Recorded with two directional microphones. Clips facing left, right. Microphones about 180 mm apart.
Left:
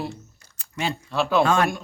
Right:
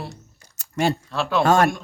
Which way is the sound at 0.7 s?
45° right (ahead or behind).